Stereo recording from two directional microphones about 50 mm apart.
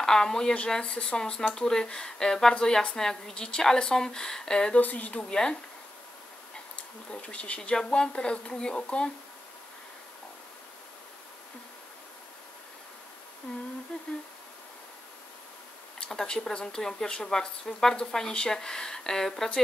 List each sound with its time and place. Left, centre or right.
0.0 s a woman's voice: centre
4.7 s speech: left
5.3 s speech: centre
7.1 s speech: left
16.0 s speech: centre